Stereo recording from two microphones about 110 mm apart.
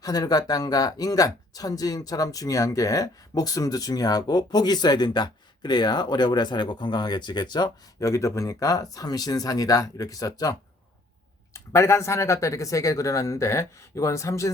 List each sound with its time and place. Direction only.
0.0 s speech: 35° left (ahead or behind)
8.0 s speech: 30° left (ahead or behind)